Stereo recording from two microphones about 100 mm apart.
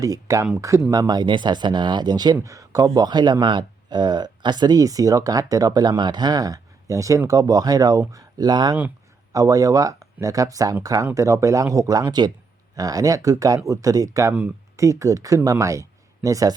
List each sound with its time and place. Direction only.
0.0 s speech: 35° right (ahead or behind)